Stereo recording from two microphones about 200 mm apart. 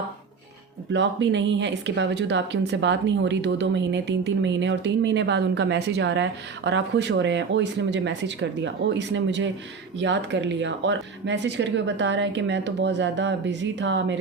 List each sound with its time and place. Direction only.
0.9 s speech: 65° right (ahead or behind)